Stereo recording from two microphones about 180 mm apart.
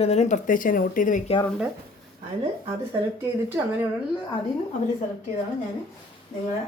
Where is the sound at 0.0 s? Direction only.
40° left (ahead or behind).